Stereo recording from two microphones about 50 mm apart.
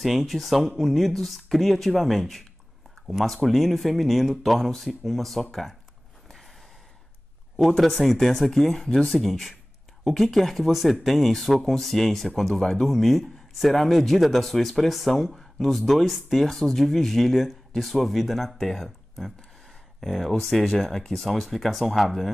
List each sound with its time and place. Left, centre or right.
0.0 s speech: centre
7.5 s speech: centre